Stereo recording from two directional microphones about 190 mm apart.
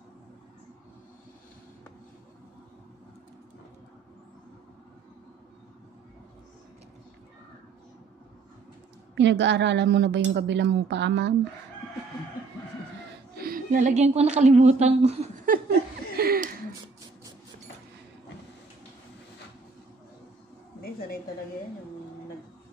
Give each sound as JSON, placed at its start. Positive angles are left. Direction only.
{"t": 9.1, "sound": "a woman's voice", "side_deg": -70}
{"t": 13.3, "sound": "a woman's voice", "side_deg": -50}
{"t": 15.5, "sound": "laughter", "side_deg": -45}
{"t": 16.2, "sound": "a sound", "side_deg": -50}